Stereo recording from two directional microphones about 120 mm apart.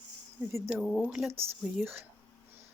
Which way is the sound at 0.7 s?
Centre (ahead or behind).